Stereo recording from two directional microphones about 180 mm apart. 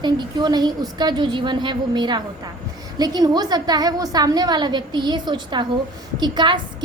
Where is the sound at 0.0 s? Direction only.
25° right (ahead or behind).